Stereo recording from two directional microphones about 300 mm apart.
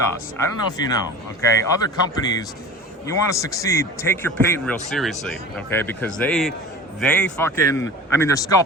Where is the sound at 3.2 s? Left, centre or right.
Centre.